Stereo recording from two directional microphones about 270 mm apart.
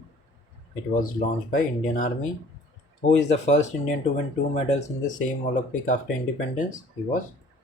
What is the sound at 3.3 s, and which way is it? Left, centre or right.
Speech, left.